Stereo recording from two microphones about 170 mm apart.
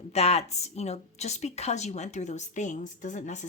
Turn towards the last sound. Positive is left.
turn(degrees=45)  # may be behind; listen again after turning